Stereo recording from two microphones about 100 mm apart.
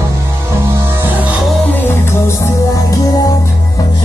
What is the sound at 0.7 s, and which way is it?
Music, 25° right (ahead or behind).